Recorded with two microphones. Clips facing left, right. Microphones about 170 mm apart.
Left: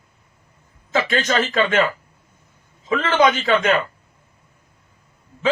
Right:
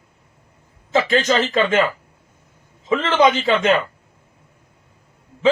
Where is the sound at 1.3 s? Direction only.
25° right (ahead or behind).